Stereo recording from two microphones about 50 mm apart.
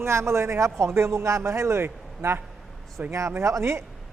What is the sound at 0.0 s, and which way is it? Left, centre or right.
A man's voice, right.